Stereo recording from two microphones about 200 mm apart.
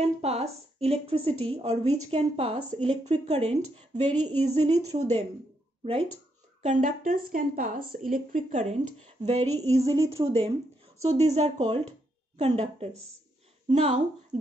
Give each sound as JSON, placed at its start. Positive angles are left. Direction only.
{"t": 0.0, "sound": "a woman's voice", "side_deg": -30}
{"t": 4.1, "sound": "speech", "side_deg": -90}
{"t": 4.4, "sound": "a woman's voice", "side_deg": -35}
{"t": 6.6, "sound": "a woman's voice", "side_deg": -40}